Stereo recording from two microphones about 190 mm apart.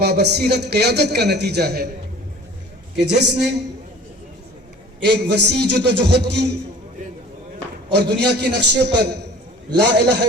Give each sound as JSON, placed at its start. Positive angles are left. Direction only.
{"t": 0.0, "sound": "a man's voice", "side_deg": -60}
{"t": 3.0, "sound": "a man's voice", "side_deg": -65}
{"t": 5.0, "sound": "a man's voice", "side_deg": -60}
{"t": 7.9, "sound": "a man's voice", "side_deg": -60}